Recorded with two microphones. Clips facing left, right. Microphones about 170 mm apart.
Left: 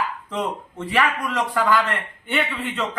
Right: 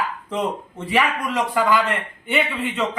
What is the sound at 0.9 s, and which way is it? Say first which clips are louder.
A man's voice: right 1 dB; 10° right (ahead or behind).